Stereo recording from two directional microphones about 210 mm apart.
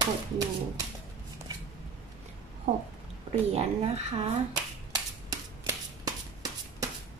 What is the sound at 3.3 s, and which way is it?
Speech, 30° right (ahead or behind).